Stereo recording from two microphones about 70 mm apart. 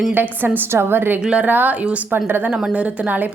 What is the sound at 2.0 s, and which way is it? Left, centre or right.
Speech, right.